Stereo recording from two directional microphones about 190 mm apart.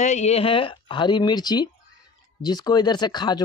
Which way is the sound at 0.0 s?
35° left (ahead or behind).